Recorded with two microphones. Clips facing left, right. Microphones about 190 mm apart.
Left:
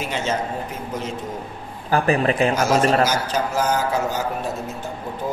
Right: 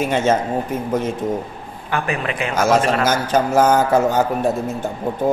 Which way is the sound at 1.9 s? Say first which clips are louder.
Left 4 dB; 35° left (ahead or behind).